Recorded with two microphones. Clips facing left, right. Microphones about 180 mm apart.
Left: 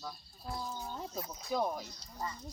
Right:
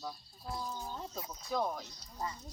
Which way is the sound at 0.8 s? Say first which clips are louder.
Left 1 dB; 5° left (ahead or behind).